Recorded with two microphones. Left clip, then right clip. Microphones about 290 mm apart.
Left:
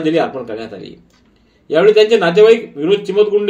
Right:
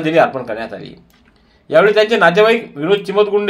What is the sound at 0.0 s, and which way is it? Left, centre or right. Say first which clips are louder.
Speech: right 3 dB; right.